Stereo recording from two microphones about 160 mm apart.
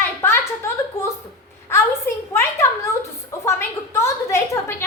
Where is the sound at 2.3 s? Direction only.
20° left (ahead or behind).